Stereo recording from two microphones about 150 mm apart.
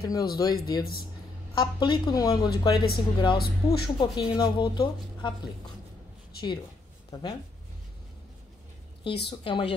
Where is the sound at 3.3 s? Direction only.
90° left.